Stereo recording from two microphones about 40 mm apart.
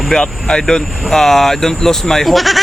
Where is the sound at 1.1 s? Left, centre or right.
Centre.